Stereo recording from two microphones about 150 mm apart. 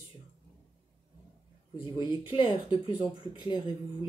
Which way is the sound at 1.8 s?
35° left (ahead or behind).